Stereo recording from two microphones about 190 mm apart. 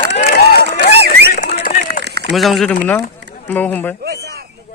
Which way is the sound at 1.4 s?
40° left (ahead or behind).